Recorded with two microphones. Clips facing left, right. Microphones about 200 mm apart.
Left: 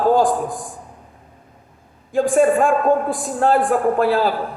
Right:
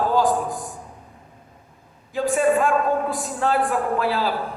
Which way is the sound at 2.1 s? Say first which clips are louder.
Left 4 dB; 50° left (ahead or behind).